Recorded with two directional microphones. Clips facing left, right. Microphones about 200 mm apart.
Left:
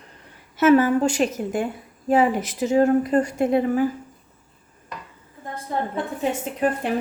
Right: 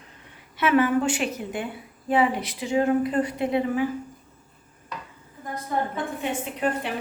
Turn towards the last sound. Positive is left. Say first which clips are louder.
# left 4 dB
turn(degrees=40)  # may be behind; listen again after turning